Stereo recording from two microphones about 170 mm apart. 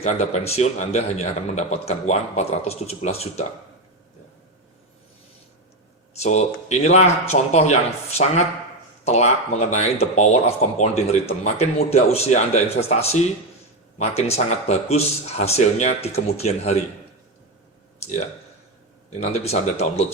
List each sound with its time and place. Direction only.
0.0 s speech: 40° left (ahead or behind)
6.2 s speech: 40° left (ahead or behind)
19.2 s speech: 40° left (ahead or behind)